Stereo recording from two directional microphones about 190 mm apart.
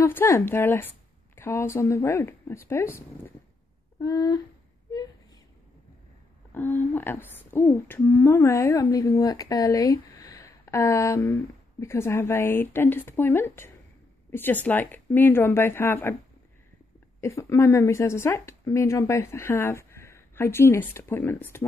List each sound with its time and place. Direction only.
0.0 s a woman's voice: 10° left (ahead or behind)
6.5 s speech: 10° left (ahead or behind)
17.2 s speech: 15° left (ahead or behind)